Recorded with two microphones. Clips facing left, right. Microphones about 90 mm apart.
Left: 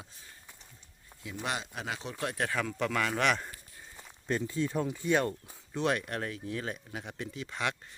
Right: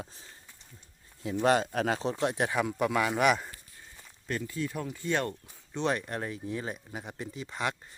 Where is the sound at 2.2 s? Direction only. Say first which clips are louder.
Right 4 dB; 20° right (ahead or behind).